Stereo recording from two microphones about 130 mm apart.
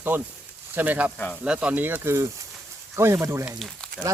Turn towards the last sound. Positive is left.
turn(degrees=0)  # may be behind; listen again after turning